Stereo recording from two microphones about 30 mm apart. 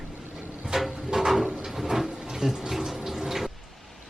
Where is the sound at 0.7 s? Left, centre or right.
Centre.